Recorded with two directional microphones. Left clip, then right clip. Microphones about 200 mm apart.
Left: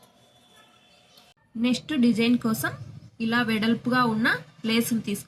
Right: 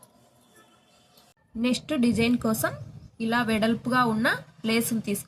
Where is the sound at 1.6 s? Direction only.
50° right (ahead or behind).